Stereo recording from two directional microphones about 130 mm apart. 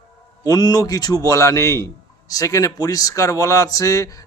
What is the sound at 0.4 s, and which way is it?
Speech, 30° left (ahead or behind).